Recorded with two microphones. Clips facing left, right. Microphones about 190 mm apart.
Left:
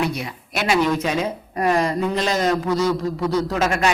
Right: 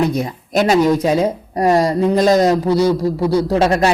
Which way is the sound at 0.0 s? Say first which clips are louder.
Right 7 dB; 40° right (ahead or behind).